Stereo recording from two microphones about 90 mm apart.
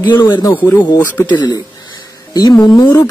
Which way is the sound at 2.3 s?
45° left (ahead or behind).